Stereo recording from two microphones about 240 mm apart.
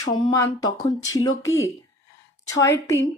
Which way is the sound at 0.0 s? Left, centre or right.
Centre.